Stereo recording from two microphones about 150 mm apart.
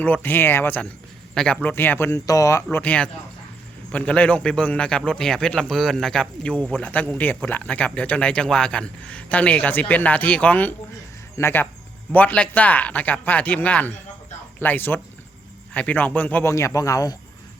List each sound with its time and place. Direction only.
0.0 s a man's voice: 10° left (ahead or behind)
2.7 s a man's voice: 10° left (ahead or behind)